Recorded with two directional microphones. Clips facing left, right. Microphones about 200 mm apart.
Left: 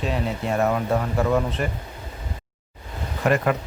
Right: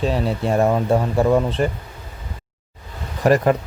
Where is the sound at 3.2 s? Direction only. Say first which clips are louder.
Right 5 dB; 35° right (ahead or behind).